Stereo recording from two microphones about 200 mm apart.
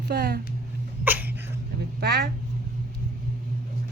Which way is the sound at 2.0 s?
55° right (ahead or behind).